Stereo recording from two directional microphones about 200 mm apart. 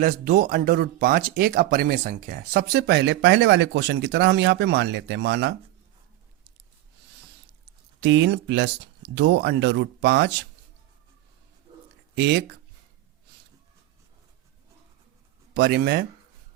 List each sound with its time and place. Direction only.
0.0 s speech: 45° right (ahead or behind)
8.0 s speech: 60° right (ahead or behind)
12.1 s speech: 60° right (ahead or behind)
15.5 s speech: 55° right (ahead or behind)